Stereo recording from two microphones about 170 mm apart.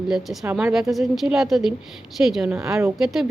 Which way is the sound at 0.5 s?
Centre (ahead or behind).